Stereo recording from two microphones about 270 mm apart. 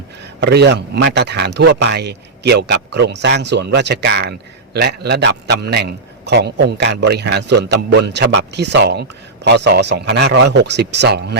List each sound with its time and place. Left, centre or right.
0.3 s a man's voice: right